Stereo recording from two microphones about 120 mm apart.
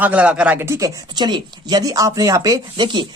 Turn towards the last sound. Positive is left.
turn(degrees=-40)  # may be behind; listen again after turning